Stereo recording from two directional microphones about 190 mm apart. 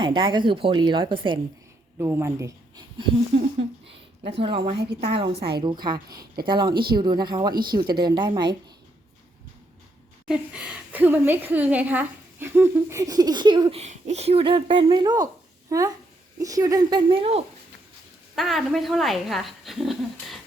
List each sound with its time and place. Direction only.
0.0 s a woman's voice: 25° right (ahead or behind)
2.0 s speech: 15° right (ahead or behind)
3.3 s a woman's voice: 30° right (ahead or behind)
4.8 s a woman's voice: 60° right (ahead or behind)
5.1 s a woman's voice: 30° right (ahead or behind)
6.1 s a woman's voice: 50° right (ahead or behind)
6.5 s a woman's voice: 25° right (ahead or behind)
10.2 s a woman's voice: 5° right (ahead or behind); by 17.4 s 30° right (ahead or behind)
18.3 s speech: centre (ahead or behind)